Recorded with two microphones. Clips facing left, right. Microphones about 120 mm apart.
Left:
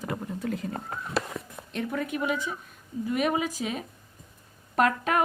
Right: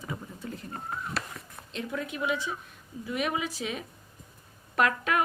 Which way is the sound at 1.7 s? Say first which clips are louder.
Left 4 dB; 50° left (ahead or behind).